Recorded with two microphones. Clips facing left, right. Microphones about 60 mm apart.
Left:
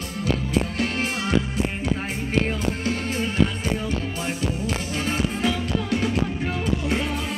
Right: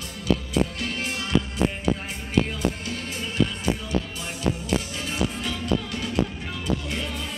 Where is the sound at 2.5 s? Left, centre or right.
Left.